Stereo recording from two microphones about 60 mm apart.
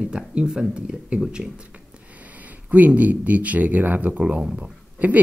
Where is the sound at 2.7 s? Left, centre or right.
Right.